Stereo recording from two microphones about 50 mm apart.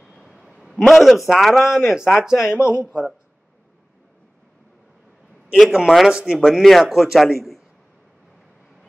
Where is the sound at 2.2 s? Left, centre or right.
Centre.